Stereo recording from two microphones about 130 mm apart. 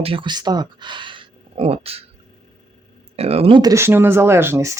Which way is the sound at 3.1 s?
50° right (ahead or behind).